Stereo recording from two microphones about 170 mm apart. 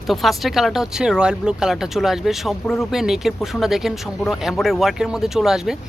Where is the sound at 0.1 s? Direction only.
Centre (ahead or behind).